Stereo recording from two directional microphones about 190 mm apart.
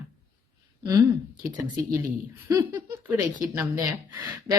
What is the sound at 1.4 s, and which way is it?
Speech, 15° right (ahead or behind).